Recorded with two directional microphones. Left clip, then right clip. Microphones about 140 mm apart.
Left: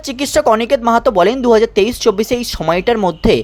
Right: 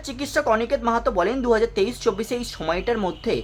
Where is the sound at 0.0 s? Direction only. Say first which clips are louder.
Left 10 dB; 45° left (ahead or behind).